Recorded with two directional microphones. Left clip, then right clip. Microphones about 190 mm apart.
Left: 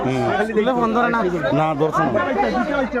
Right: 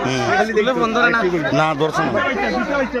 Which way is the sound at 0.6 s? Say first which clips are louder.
Right 2 dB; 50° left (ahead or behind).